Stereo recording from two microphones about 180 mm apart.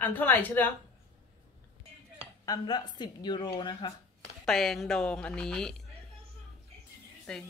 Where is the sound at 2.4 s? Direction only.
20° left (ahead or behind).